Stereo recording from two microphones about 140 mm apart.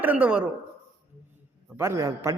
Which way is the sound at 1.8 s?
20° right (ahead or behind).